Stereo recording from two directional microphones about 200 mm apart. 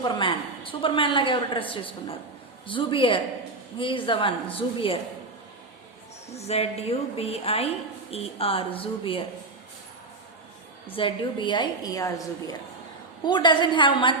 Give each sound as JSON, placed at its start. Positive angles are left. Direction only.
{"t": 0.0, "sound": "a woman's voice", "side_deg": 25}
{"t": 6.3, "sound": "a woman's voice", "side_deg": 30}
{"t": 10.8, "sound": "a woman's voice", "side_deg": 25}